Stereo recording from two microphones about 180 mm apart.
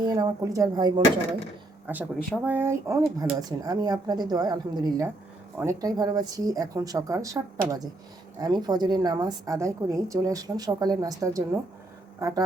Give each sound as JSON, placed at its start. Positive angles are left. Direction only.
{"t": 0.0, "sound": "a woman's voice", "side_deg": -20}
{"t": 1.9, "sound": "a woman's voice", "side_deg": -10}